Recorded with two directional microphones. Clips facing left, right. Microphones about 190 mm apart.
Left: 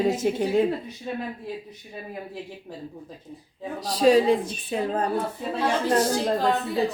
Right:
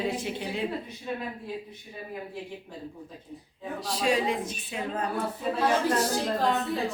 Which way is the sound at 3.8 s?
40° left (ahead or behind).